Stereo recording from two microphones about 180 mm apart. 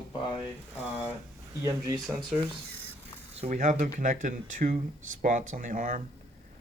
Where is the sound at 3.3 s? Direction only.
40° right (ahead or behind).